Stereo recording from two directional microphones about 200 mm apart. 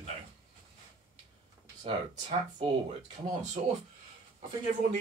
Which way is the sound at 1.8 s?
25° right (ahead or behind).